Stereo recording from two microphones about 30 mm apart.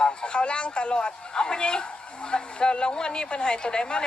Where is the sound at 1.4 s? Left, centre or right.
Left.